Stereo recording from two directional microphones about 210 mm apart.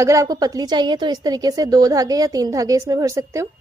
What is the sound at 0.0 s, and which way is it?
A woman's voice, 15° right (ahead or behind).